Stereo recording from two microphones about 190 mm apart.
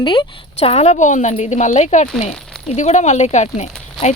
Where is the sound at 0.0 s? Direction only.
25° left (ahead or behind).